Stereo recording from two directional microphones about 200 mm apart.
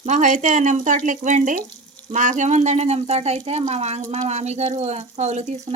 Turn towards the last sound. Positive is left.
turn(degrees=-35)  # may be behind; listen again after turning